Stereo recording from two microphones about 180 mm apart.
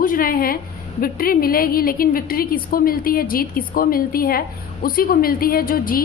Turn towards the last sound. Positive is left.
turn(degrees=55)  # may be behind; listen again after turning